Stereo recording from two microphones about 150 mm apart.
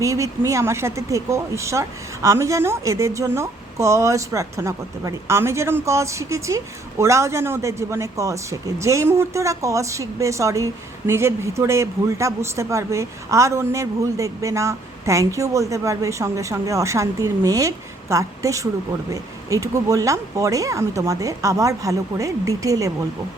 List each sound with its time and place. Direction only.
0.0 s a man's voice: 20° right (ahead or behind)